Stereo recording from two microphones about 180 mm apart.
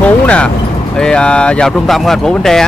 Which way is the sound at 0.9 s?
5° left (ahead or behind).